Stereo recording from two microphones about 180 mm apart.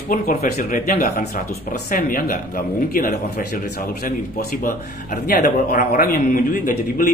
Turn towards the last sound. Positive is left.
turn(degrees=50)  # may be behind; listen again after turning